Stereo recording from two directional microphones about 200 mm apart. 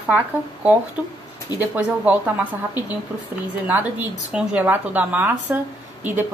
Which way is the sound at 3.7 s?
5° right (ahead or behind).